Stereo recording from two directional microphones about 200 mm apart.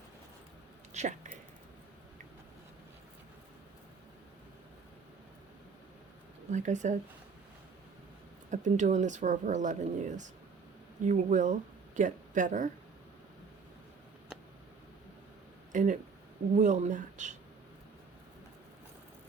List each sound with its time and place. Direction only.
0.9 s speech: 35° right (ahead or behind)
6.5 s speech: 35° right (ahead or behind)
8.4 s speech: 40° right (ahead or behind)
15.7 s speech: 40° right (ahead or behind)